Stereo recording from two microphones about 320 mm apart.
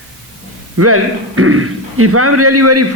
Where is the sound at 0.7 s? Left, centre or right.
Right.